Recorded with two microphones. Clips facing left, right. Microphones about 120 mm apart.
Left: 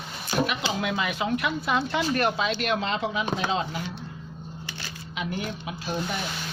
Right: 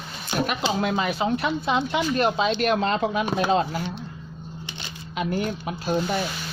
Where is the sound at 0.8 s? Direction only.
40° right (ahead or behind).